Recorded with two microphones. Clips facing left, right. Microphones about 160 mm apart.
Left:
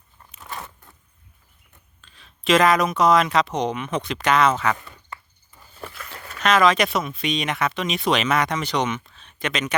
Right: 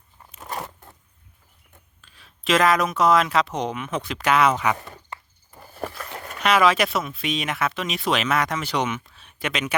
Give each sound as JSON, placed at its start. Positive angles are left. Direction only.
{"t": 2.0, "sound": "speech", "side_deg": -5}
{"t": 5.5, "sound": "a sound", "side_deg": -55}
{"t": 6.1, "sound": "speech", "side_deg": -10}